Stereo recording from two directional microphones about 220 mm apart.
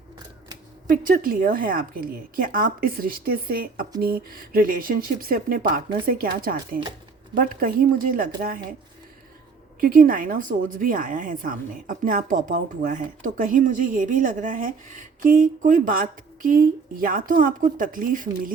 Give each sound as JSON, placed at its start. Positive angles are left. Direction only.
{"t": 0.9, "sound": "a woman's voice", "side_deg": -40}
{"t": 9.8, "sound": "a woman's voice", "side_deg": -40}